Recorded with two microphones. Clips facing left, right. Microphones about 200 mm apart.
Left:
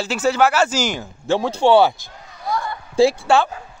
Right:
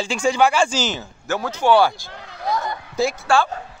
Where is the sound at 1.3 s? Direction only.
30° left (ahead or behind).